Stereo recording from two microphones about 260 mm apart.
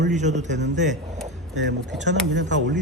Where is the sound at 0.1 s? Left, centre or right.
Right.